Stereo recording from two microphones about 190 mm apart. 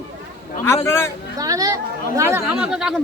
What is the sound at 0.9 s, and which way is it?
Speech, 15° left (ahead or behind).